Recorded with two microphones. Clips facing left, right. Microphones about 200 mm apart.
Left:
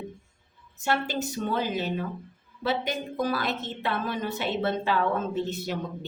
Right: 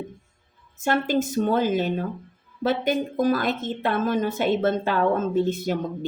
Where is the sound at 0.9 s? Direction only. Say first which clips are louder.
Right 6 dB; 50° right (ahead or behind).